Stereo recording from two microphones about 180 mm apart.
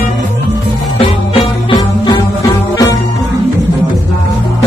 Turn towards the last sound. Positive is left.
turn(degrees=20)  # may be behind; listen again after turning